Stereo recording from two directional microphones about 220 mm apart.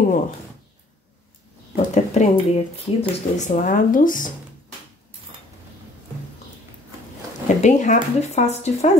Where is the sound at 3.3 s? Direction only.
35° left (ahead or behind).